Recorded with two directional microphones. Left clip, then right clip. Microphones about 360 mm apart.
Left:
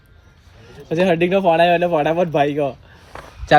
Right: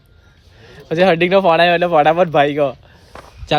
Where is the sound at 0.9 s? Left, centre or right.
Right.